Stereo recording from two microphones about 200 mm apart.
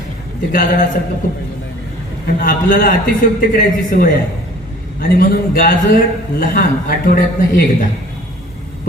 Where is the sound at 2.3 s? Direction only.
45° left (ahead or behind).